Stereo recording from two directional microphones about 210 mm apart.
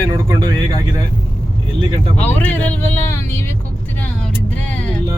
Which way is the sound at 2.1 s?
5° left (ahead or behind).